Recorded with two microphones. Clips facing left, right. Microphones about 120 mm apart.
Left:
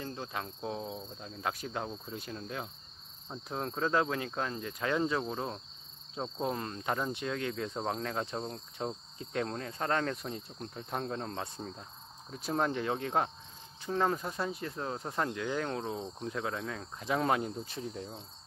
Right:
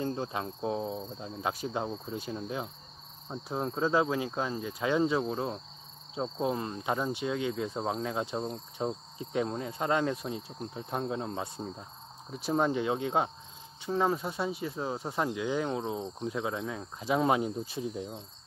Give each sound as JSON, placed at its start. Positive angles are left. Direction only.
{"t": 0.0, "sound": "cricket", "side_deg": -25}
{"t": 2.3, "sound": "speech", "side_deg": -15}
{"t": 13.8, "sound": "mechanisms", "side_deg": -5}
{"t": 14.6, "sound": "speech", "side_deg": -5}